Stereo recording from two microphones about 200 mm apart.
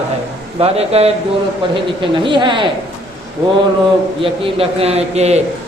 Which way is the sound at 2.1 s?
25° right (ahead or behind).